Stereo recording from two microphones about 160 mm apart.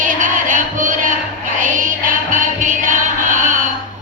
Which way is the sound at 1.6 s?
55° right (ahead or behind).